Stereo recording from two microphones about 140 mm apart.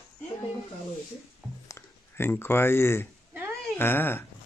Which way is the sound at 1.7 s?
15° left (ahead or behind).